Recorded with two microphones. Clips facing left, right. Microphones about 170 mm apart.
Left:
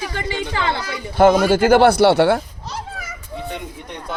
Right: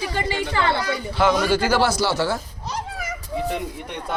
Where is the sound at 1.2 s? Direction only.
50° left (ahead or behind).